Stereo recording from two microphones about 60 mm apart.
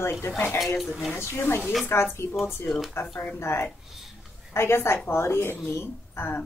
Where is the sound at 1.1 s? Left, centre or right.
Left.